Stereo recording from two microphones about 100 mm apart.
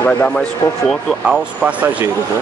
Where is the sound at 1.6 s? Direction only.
15° right (ahead or behind).